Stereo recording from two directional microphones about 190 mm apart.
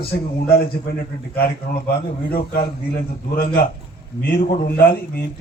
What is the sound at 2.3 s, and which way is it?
A man's voice, 50° left (ahead or behind).